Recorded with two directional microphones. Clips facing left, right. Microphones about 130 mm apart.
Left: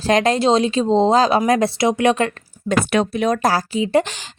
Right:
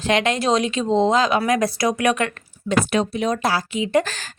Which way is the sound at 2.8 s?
65° left (ahead or behind).